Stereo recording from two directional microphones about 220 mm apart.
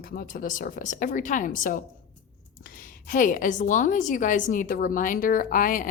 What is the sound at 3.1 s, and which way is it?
A woman's voice, 40° left (ahead or behind).